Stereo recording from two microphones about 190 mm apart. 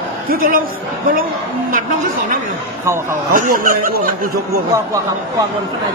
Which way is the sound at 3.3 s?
45° right (ahead or behind).